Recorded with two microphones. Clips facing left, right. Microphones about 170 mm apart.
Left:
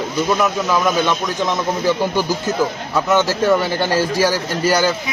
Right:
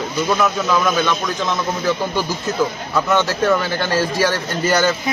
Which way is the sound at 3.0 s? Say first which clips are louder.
Left 2 dB; 10° left (ahead or behind).